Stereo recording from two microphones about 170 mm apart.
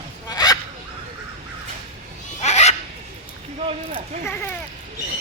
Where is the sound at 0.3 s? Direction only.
20° left (ahead or behind).